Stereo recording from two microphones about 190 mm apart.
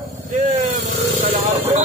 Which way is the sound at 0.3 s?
40° right (ahead or behind).